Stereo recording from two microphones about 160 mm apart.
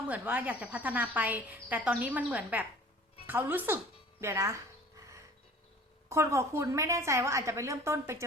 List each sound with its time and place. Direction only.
0.1 s a woman's voice: 10° right (ahead or behind)
6.1 s a woman's voice: 20° right (ahead or behind)